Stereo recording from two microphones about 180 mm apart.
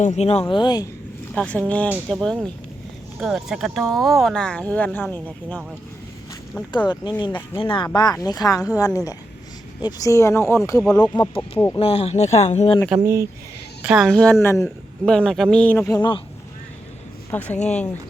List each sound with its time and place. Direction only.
0.0 s speech: 40° left (ahead or behind)
1.4 s speech: 5° left (ahead or behind)
6.8 s speech: 25° left (ahead or behind)
9.8 s speech: 20° left (ahead or behind)
11.8 s speech: 35° left (ahead or behind)
12.9 s speech: 15° right (ahead or behind)
13.8 s speech: 5° right (ahead or behind); by 14.7 s 15° left (ahead or behind)
15.0 s speech: 5° left (ahead or behind)
16.0 s speech: 25° left (ahead or behind)
17.3 s speech: 10° left (ahead or behind)